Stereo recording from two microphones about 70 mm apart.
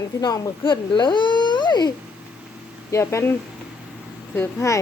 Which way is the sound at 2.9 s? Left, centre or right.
Left.